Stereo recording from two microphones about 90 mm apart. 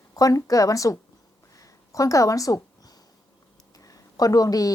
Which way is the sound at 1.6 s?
40° left (ahead or behind).